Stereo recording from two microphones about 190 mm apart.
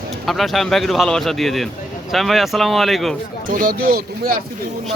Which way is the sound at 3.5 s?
50° right (ahead or behind).